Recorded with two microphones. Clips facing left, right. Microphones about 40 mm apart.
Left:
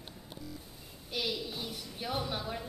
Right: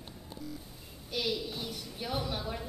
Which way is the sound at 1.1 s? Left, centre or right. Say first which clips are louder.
Right 2 dB; centre.